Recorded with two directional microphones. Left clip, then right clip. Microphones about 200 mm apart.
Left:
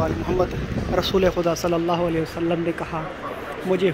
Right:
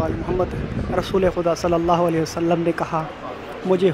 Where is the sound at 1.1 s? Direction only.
10° right (ahead or behind).